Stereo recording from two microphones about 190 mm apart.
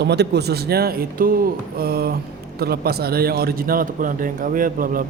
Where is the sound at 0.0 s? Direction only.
60° right (ahead or behind).